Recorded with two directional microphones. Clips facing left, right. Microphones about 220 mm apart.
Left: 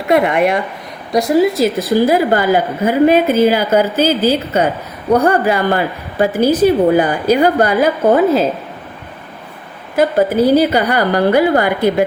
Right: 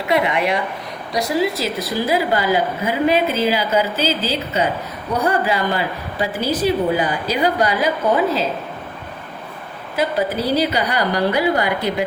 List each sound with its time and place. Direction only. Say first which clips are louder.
0.1 s a woman's voice: left 6 dB; 50° left (ahead or behind)
9.9 s a woman's voice: left 7 dB; 50° left (ahead or behind)